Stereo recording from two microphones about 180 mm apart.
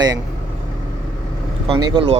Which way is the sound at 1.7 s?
30° right (ahead or behind).